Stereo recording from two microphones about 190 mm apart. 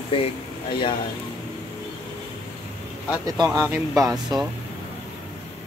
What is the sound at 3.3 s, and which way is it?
Speech, 15° right (ahead or behind).